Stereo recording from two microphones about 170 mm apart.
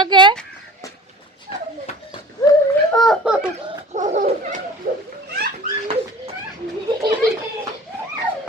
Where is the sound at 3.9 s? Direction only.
45° right (ahead or behind).